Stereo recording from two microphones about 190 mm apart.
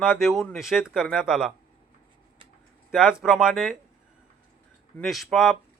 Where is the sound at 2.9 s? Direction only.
5° right (ahead or behind).